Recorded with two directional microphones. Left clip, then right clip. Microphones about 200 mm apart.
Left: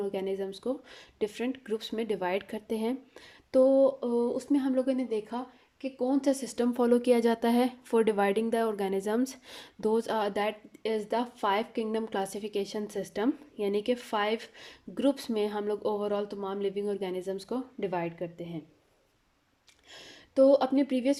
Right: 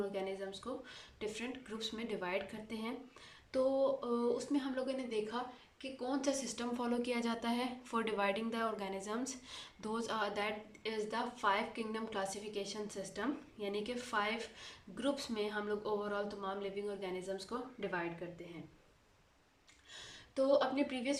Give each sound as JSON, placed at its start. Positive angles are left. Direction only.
{"t": 0.1, "sound": "a woman's voice", "side_deg": 45}
{"t": 19.9, "sound": "speech", "side_deg": 45}